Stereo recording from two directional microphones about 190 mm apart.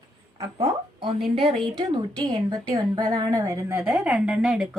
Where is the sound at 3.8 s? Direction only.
5° right (ahead or behind).